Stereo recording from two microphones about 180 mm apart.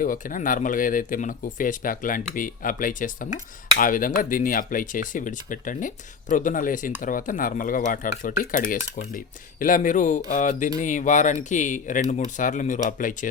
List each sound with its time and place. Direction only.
0.0 s speech: 50° left (ahead or behind)